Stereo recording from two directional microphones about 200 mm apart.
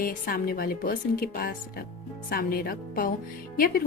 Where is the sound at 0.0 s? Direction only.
45° left (ahead or behind).